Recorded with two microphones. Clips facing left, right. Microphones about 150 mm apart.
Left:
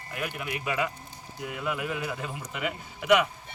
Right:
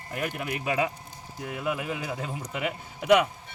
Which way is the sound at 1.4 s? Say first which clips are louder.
Right 1 dB; 20° right (ahead or behind).